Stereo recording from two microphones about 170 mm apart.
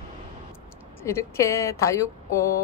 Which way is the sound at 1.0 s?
15° left (ahead or behind).